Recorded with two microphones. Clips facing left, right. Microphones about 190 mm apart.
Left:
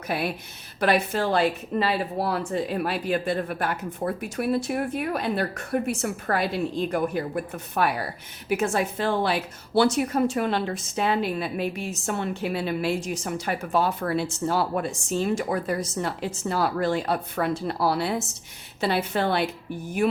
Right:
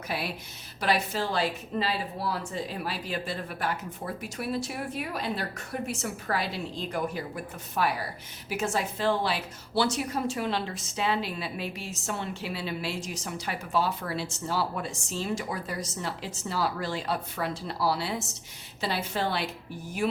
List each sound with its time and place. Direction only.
0.1 s a woman's voice: 55° left (ahead or behind)